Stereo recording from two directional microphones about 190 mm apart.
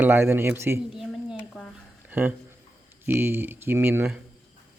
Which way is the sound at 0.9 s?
Centre (ahead or behind).